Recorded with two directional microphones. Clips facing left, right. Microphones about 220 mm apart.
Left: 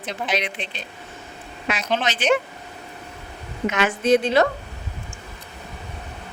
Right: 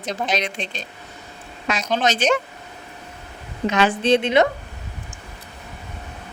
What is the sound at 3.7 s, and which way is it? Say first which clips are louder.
Speech: right 1 dB; 35° right (ahead or behind).